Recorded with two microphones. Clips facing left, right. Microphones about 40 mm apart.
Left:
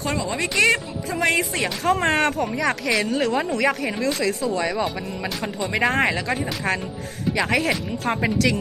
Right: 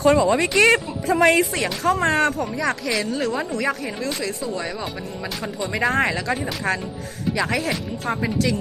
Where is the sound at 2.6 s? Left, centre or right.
Centre.